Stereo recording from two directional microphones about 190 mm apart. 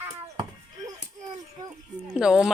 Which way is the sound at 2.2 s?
5° right (ahead or behind).